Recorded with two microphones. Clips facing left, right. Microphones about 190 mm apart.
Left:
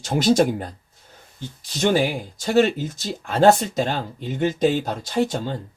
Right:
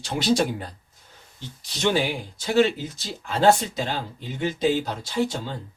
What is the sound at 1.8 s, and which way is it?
Speech, 45° left (ahead or behind).